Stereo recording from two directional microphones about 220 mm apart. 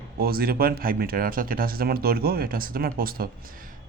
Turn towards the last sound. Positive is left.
turn(degrees=-40)  # may be behind; listen again after turning